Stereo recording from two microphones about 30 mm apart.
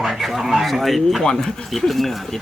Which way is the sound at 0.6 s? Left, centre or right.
Centre.